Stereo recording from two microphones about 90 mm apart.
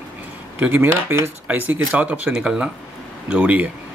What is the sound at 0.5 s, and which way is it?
Speech, 20° right (ahead or behind).